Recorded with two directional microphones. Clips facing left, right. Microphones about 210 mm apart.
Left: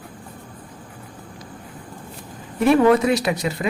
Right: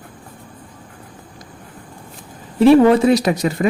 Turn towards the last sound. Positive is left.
turn(degrees=-45)  # may be behind; listen again after turning